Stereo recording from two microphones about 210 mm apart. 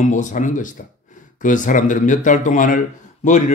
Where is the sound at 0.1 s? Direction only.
35° left (ahead or behind).